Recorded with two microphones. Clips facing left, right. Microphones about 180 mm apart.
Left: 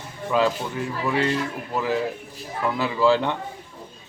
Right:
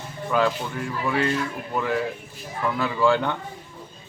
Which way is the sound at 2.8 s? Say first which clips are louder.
Left 1 dB; 5° left (ahead or behind).